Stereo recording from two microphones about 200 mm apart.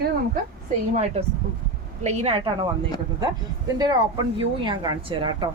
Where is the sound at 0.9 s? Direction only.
35° right (ahead or behind).